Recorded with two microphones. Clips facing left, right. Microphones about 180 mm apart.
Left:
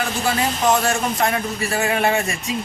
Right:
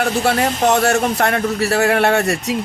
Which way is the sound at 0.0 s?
65° right (ahead or behind).